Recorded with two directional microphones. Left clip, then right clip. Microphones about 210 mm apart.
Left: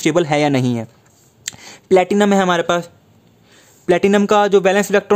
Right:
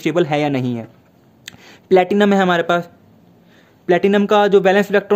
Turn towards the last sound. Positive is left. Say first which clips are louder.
# even
turn(degrees=35)  # may be behind; listen again after turning